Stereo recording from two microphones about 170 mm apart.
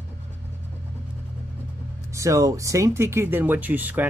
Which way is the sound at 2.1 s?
20° right (ahead or behind).